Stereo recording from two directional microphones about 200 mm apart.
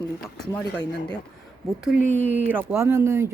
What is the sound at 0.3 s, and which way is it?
Speech, 5° left (ahead or behind).